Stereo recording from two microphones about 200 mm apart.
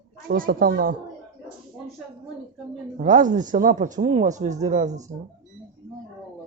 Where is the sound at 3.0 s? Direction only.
40° right (ahead or behind).